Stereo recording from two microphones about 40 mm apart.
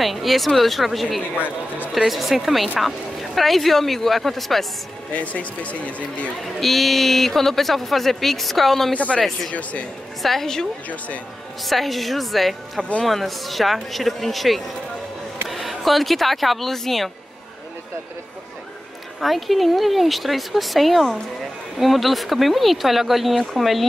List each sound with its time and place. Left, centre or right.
0.0 s a man's voice: centre
5.1 s speech: left
6.4 s a man's voice: centre
8.9 s speech: left
10.4 s a woman's voice: centre
11.6 s a man's voice: centre
19.1 s a man's voice: centre